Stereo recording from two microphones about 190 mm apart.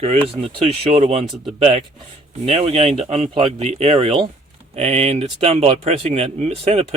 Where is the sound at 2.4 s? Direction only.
35° right (ahead or behind).